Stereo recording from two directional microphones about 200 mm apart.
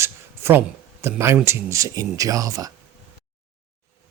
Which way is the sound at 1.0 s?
15° right (ahead or behind).